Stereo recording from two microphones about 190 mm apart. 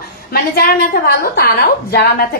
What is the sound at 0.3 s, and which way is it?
A woman's voice, 55° left (ahead or behind).